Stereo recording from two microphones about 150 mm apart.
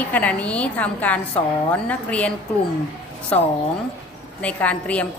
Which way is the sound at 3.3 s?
10° left (ahead or behind).